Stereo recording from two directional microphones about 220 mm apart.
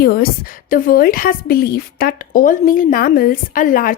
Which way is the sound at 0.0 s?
45° left (ahead or behind).